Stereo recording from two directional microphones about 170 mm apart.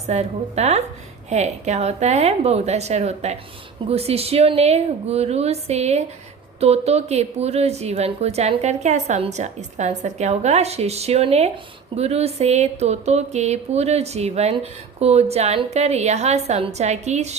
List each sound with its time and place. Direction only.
0.1 s speech: 40° right (ahead or behind)